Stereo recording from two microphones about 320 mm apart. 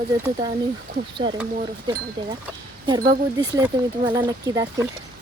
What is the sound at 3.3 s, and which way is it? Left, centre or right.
Speech, centre.